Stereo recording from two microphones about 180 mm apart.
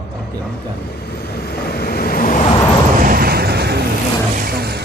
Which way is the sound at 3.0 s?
55° right (ahead or behind).